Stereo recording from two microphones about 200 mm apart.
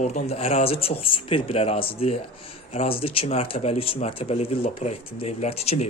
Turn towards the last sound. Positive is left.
turn(degrees=30)  # may be behind; listen again after turning